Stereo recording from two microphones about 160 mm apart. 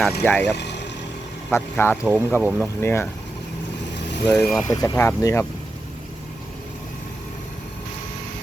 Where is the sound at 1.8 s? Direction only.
15° left (ahead or behind).